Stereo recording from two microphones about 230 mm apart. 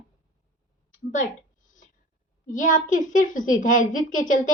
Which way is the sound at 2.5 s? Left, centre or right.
Left.